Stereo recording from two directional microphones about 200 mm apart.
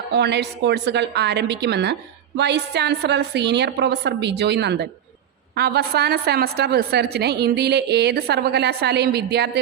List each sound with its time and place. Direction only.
0.1 s a woman's voice: 55° right (ahead or behind)